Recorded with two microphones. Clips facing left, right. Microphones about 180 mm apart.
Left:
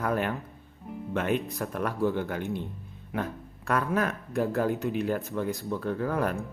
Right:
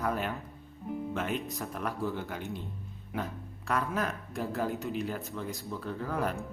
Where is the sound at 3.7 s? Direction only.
60° left (ahead or behind).